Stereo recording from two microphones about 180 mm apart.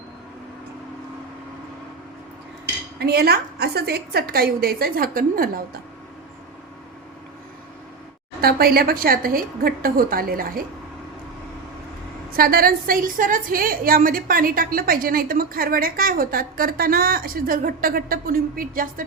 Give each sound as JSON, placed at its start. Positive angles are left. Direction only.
{"t": 3.0, "sound": "a woman's voice", "side_deg": -60}
{"t": 8.4, "sound": "a woman's voice", "side_deg": -60}
{"t": 12.4, "sound": "a woman's voice", "side_deg": -55}